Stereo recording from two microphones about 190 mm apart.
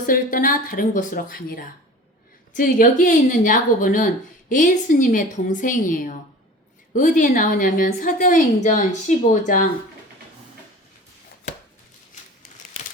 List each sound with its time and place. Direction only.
0.0 s speech: 45° left (ahead or behind)